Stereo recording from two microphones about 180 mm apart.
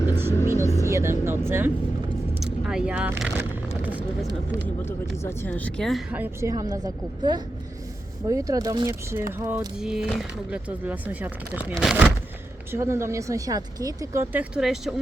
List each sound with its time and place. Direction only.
0.3 s music: 15° left (ahead or behind)
0.9 s speech: 15° right (ahead or behind)
5.1 s speech: 15° left (ahead or behind); by 9.6 s 15° right (ahead or behind)
9.7 s speech: 5° right (ahead or behind)
12.7 s speech: 15° right (ahead or behind)